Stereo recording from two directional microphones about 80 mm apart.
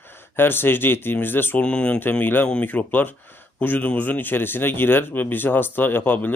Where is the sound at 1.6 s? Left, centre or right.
Centre.